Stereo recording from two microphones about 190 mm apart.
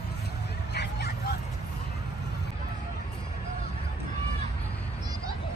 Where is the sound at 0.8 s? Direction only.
60° left (ahead or behind).